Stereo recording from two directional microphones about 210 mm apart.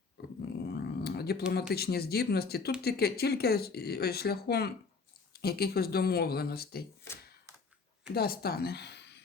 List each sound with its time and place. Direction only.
0.2 s dog: 50° left (ahead or behind)
0.5 s a sound: 50° left (ahead or behind)
1.7 s speech: 50° left (ahead or behind)
8.1 s speech: 45° left (ahead or behind)